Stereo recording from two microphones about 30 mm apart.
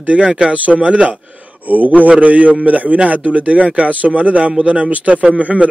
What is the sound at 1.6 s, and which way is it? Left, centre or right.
A man's voice, right.